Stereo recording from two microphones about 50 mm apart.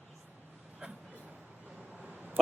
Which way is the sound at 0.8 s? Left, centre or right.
Centre.